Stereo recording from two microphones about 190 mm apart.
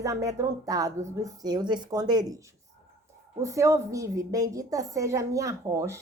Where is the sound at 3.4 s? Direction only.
15° right (ahead or behind).